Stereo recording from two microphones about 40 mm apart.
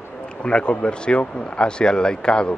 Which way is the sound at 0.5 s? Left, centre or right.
Left.